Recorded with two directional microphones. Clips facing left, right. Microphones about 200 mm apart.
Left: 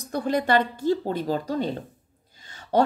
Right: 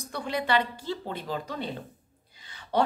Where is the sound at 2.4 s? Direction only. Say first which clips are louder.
Left 5 dB; 45° left (ahead or behind).